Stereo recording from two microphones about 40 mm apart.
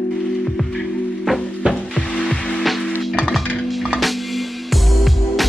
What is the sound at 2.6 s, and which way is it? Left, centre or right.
Music, centre.